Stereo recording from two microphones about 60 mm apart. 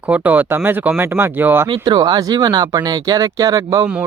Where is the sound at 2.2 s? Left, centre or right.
Right.